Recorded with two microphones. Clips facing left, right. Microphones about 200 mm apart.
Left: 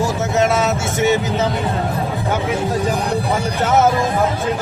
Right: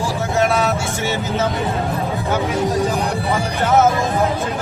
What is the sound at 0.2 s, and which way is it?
Vehicle, 20° left (ahead or behind).